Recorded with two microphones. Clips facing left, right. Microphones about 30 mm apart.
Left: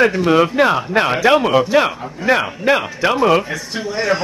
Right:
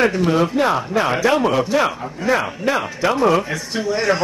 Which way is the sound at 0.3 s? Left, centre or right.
Left.